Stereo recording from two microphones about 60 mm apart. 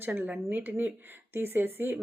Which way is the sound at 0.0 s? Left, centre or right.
Right.